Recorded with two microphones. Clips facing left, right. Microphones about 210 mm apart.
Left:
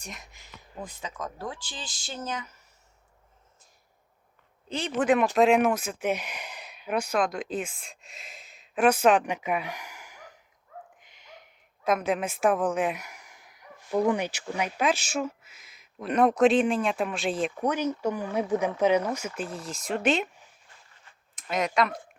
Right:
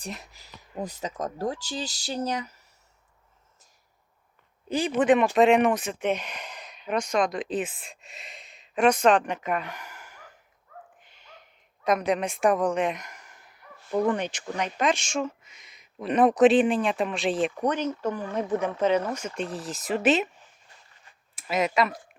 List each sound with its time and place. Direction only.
0.0 s speech: 35° right (ahead or behind)
4.7 s speech: 10° right (ahead or behind); by 10.3 s 10° left (ahead or behind)
11.0 s a sound: 15° left (ahead or behind)
11.8 s a woman's voice: centre (ahead or behind)
21.3 s speech: 5° right (ahead or behind)